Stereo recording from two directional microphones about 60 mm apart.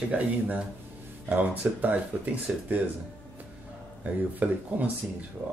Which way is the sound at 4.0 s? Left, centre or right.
Right.